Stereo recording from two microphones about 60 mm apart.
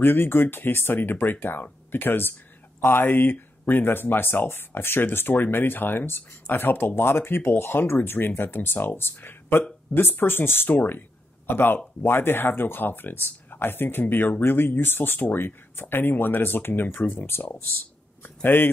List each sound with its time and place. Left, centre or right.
0.0 s speech: left